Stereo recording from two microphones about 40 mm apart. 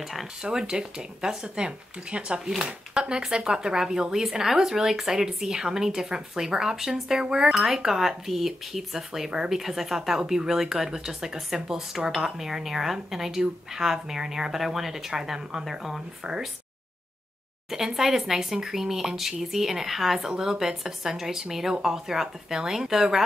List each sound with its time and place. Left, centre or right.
0.0 s speech: centre
0.4 s speech: centre
7.7 s speech: centre
9.3 s speech: centre
9.6 s speech: centre
17.6 s speech: centre